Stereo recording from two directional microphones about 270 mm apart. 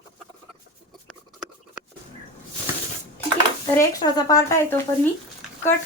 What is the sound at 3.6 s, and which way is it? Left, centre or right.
Speech, centre.